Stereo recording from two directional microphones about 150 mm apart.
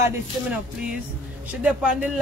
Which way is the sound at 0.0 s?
10° right (ahead or behind).